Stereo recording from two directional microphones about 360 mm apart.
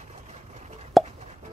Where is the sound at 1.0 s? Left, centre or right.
Centre.